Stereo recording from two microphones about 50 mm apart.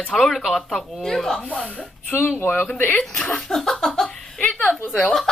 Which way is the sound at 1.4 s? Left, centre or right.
Left.